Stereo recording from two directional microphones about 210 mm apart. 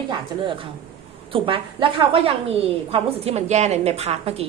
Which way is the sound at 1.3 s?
25° right (ahead or behind).